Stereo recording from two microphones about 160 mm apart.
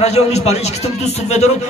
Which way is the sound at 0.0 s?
45° left (ahead or behind).